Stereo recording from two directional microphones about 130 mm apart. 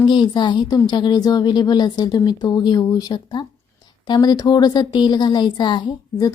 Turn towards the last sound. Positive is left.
turn(degrees=30)  # may be behind; listen again after turning